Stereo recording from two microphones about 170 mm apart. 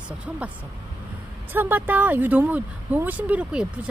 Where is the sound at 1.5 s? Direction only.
10° right (ahead or behind).